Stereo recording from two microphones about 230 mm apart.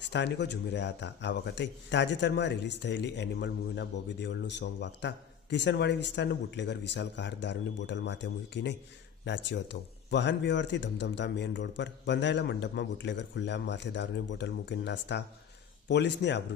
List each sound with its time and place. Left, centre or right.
0.1 s a man's voice: left